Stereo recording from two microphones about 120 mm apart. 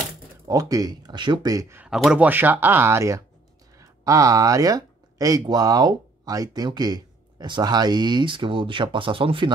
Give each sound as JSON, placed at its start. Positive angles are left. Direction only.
{"t": 0.5, "sound": "speech", "side_deg": -30}
{"t": 1.9, "sound": "speech", "side_deg": -10}